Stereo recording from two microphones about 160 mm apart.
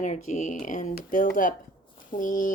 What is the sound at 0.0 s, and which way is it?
Speech, 50° left (ahead or behind).